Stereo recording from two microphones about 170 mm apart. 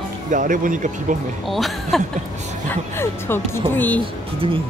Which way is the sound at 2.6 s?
15° left (ahead or behind).